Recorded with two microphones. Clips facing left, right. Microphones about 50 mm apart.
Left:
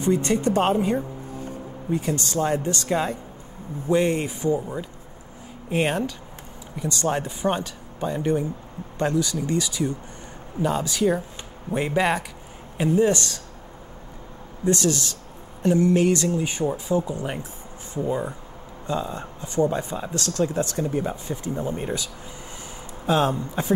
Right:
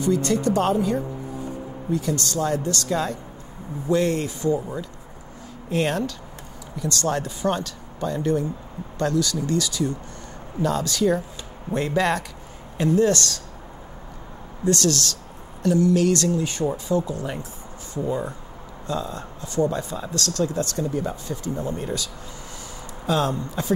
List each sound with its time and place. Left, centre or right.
0.0 s speech: left
5.7 s speech: centre
14.6 s speech: centre